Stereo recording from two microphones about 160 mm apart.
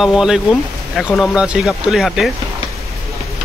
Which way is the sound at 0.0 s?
5° right (ahead or behind).